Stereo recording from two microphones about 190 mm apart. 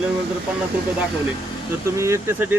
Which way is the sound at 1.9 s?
15° right (ahead or behind).